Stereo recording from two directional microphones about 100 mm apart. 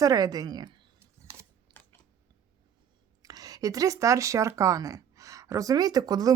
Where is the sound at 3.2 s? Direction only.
40° right (ahead or behind).